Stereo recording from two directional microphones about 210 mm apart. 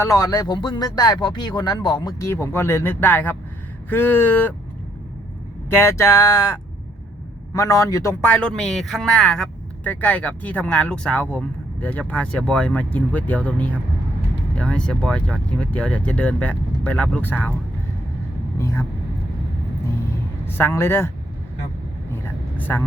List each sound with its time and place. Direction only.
0.0 s speech: 15° left (ahead or behind)
5.7 s a man's voice: 15° left (ahead or behind)
18.6 s speech: 15° left (ahead or behind)
20.6 s speech: 10° left (ahead or behind)
22.1 s vehicle: 10° left (ahead or behind)